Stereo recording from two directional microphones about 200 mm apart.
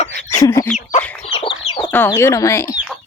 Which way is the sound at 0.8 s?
40° left (ahead or behind).